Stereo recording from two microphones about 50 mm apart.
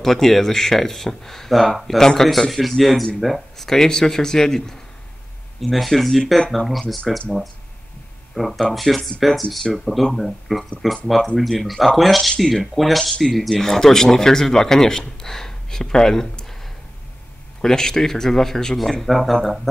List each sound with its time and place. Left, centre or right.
0.0 s speech: centre
8.4 s speech: centre
17.6 s speech: centre